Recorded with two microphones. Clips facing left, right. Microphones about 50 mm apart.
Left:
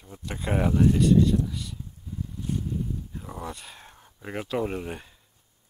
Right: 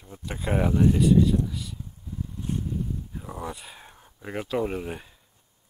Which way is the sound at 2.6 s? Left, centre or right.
Centre.